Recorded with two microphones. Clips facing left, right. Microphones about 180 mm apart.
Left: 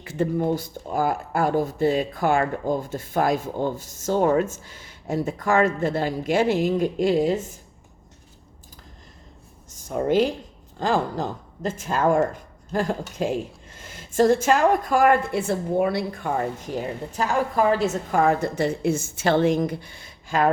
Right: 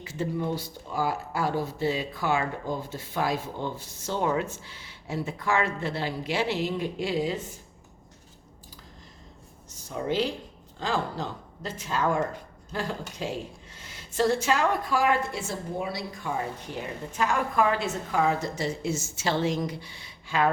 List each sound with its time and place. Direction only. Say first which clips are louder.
0.0 s speech: left 6 dB; 55° left (ahead or behind)
9.9 s speech: left 7 dB; 50° left (ahead or behind)
16.8 s speech: even; 35° left (ahead or behind)